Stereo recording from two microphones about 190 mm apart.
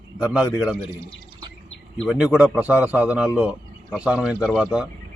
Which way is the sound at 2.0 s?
5° right (ahead or behind).